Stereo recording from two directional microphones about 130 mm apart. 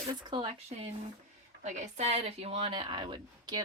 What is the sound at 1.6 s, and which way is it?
Speech, 60° right (ahead or behind).